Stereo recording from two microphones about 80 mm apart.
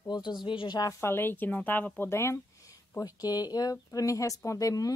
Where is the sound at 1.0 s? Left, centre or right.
Left.